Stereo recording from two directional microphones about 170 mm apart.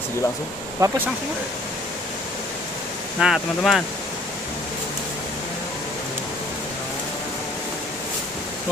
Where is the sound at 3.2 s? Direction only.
Centre (ahead or behind).